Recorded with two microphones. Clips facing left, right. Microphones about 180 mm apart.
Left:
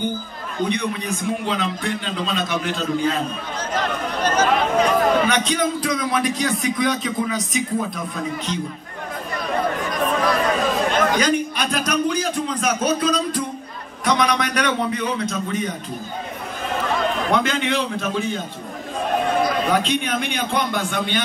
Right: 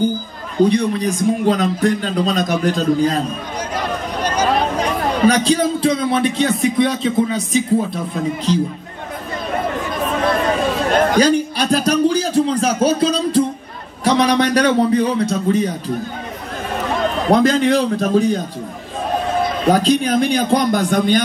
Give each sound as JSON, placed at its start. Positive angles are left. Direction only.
{"t": 0.6, "sound": "a man's voice", "side_deg": -35}
{"t": 3.7, "sound": "a sound", "side_deg": -10}
{"t": 4.7, "sound": "speech", "side_deg": -35}
{"t": 10.9, "sound": "a man's voice", "side_deg": -35}
{"t": 17.3, "sound": "a man's voice", "side_deg": -35}
{"t": 19.7, "sound": "a man's voice", "side_deg": -35}